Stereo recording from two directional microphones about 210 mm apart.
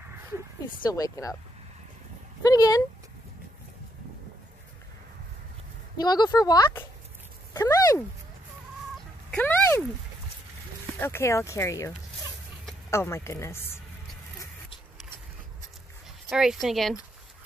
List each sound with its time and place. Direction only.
0.8 s speech: 15° left (ahead or behind)
2.4 s speech: 15° left (ahead or behind)
5.9 s speech: 20° left (ahead or behind)
9.3 s a sound: 10° left (ahead or behind)
11.0 s speech: 10° left (ahead or behind)
12.9 s speech: 15° left (ahead or behind)
16.3 s speech: centre (ahead or behind)